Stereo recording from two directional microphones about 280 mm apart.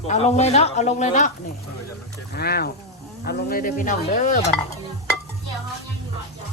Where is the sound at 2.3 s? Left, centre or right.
Left.